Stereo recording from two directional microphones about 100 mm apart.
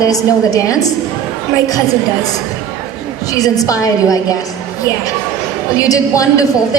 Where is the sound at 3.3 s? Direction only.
35° left (ahead or behind).